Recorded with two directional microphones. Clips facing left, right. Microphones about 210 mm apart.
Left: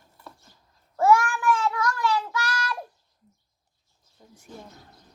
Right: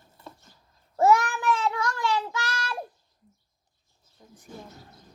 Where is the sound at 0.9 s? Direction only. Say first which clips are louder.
Left 1 dB; 20° right (ahead or behind).